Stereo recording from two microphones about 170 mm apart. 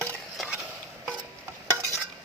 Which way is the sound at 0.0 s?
5° left (ahead or behind).